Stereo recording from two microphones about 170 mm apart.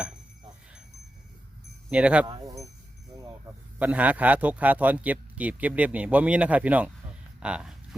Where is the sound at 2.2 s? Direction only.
25° right (ahead or behind).